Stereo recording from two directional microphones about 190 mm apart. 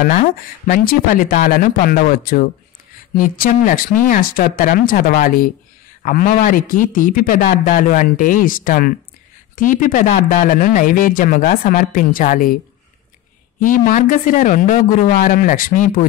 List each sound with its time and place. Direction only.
0.0 s speech: 45° left (ahead or behind)
13.6 s speech: 45° left (ahead or behind)